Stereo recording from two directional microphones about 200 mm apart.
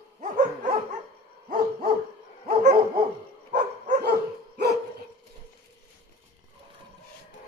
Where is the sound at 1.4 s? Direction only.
45° right (ahead or behind).